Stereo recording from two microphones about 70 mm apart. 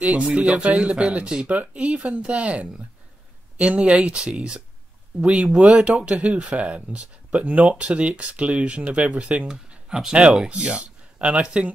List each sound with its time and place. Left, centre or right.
0.0 s speech: centre